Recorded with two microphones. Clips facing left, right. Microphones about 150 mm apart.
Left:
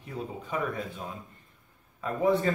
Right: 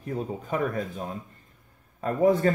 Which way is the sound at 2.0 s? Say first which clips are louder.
Right 4 dB; 45° right (ahead or behind).